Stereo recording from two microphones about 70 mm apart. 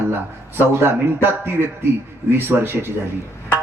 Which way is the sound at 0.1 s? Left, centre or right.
Right.